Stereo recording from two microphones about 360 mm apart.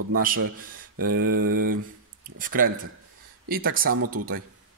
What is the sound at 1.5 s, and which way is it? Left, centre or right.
A man's voice, right.